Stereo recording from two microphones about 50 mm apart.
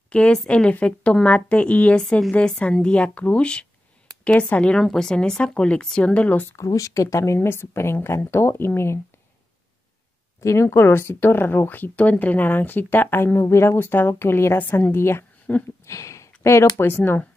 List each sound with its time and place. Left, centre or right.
0.3 s a woman's voice: left
2.0 s a woman's voice: centre
4.7 s a woman's voice: centre; by 6.4 s left
6.5 s speech: left
7.3 s a woman's voice: left
10.4 s a woman's voice: left
15.5 s speech: left
15.8 s speech: left
16.8 s speech: left